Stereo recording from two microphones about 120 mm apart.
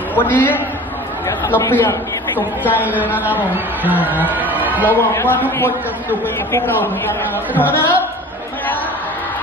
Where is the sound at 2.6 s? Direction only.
15° right (ahead or behind).